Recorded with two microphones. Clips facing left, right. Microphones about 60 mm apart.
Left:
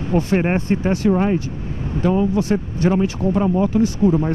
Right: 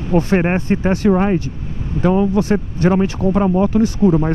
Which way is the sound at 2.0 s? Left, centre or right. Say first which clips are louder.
Right 3 dB; right.